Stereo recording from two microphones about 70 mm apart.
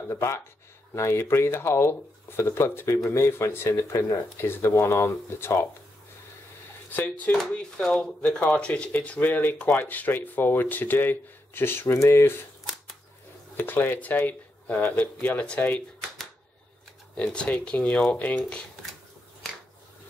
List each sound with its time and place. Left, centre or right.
0.1 s speech: left
6.9 s speech: left
13.6 s speech: left
17.2 s speech: centre